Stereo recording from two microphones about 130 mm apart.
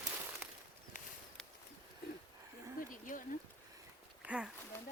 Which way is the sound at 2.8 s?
90° left.